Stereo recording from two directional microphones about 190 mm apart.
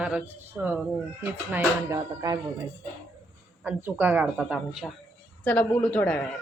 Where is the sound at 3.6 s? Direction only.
10° right (ahead or behind); by 6.3 s 5° left (ahead or behind).